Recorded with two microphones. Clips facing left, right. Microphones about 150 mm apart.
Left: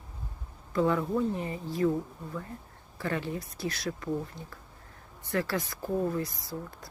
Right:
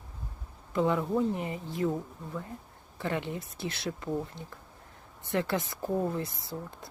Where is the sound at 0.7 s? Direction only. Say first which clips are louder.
Left 1 dB; 20° right (ahead or behind).